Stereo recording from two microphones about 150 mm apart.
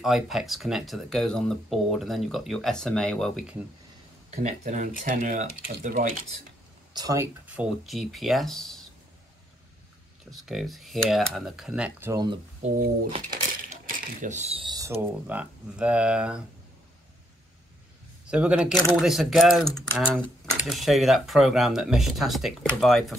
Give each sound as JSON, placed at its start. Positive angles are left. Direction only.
{"t": 0.0, "sound": "speech", "side_deg": 0}
{"t": 4.3, "sound": "speech", "side_deg": -55}
{"t": 6.9, "sound": "speech", "side_deg": -25}
{"t": 7.4, "sound": "speech", "side_deg": -5}
{"t": 10.3, "sound": "speech", "side_deg": 0}
{"t": 12.1, "sound": "speech", "side_deg": -30}
{"t": 12.6, "sound": "speech", "side_deg": -65}
{"t": 13.3, "sound": "coin", "side_deg": -65}
{"t": 14.7, "sound": "a sound", "side_deg": -25}
{"t": 15.2, "sound": "speech", "side_deg": -10}
{"t": 18.2, "sound": "speech", "side_deg": -5}